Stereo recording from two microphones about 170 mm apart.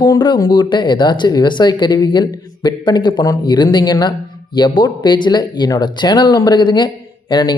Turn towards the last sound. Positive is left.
turn(degrees=25)  # may be behind; listen again after turning